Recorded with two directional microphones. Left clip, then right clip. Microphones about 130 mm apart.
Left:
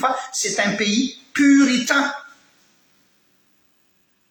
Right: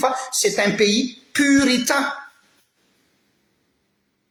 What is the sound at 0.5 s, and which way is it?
A man's voice, 55° right (ahead or behind).